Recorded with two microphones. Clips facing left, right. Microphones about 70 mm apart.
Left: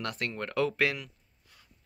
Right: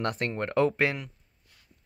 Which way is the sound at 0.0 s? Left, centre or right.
Right.